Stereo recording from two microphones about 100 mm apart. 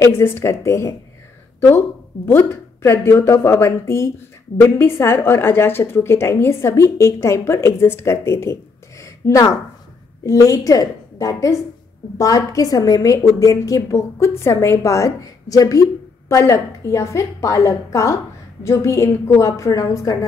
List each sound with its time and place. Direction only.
0.0 s a woman's voice: 25° left (ahead or behind)
9.0 s a sound: 35° left (ahead or behind)
10.2 s a woman's voice: 35° left (ahead or behind)